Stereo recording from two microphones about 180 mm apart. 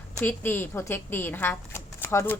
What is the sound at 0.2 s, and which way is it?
Speech, 10° left (ahead or behind).